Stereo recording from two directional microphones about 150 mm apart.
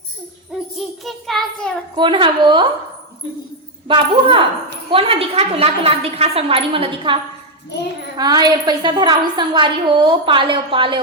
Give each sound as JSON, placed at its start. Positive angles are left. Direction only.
{"t": 0.8, "sound": "child singing", "side_deg": 0}
{"t": 2.0, "sound": "a woman's voice", "side_deg": -30}
{"t": 3.8, "sound": "a woman's voice", "side_deg": -35}
{"t": 8.2, "sound": "a woman's voice", "side_deg": -25}